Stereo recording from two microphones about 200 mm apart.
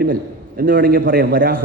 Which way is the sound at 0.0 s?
45° right (ahead or behind).